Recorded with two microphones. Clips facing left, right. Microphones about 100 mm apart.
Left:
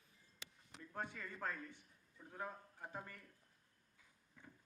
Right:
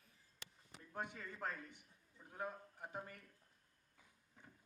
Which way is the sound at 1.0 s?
20° right (ahead or behind).